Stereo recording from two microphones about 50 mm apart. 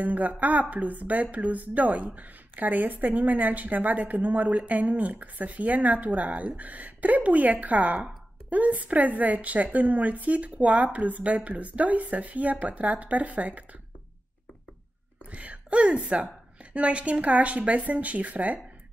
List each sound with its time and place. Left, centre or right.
0.0 s speech: right
15.3 s a woman's voice: right